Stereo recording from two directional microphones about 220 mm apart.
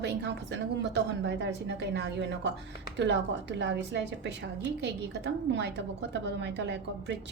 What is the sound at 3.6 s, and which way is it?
A woman's voice, 55° right (ahead or behind).